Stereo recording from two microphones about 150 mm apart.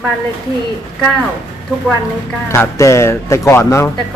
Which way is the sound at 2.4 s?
15° left (ahead or behind).